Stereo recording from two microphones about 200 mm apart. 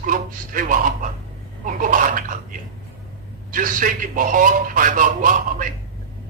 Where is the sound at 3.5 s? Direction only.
40° right (ahead or behind).